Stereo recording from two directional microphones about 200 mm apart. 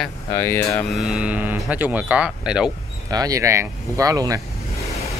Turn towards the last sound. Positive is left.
turn(degrees=-15)  # may be behind; listen again after turning